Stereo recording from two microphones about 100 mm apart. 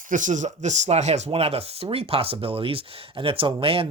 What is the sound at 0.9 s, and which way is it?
Speech, 90° right.